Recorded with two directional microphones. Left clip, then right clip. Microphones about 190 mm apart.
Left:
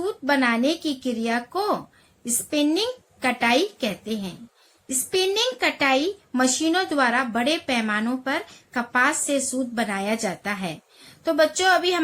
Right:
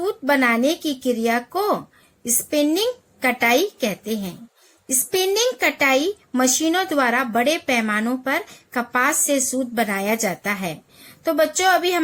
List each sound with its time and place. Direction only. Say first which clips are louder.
0.0 s a woman's voice: right 3 dB; 35° right (ahead or behind)